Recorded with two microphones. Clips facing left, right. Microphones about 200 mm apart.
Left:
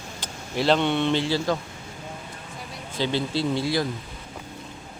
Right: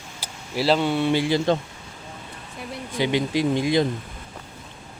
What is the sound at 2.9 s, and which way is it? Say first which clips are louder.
Speech: right 3 dB; 15° right (ahead or behind).